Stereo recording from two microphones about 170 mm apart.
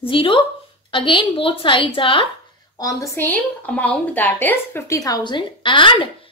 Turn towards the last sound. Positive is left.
turn(degrees=30)  # may be behind; listen again after turning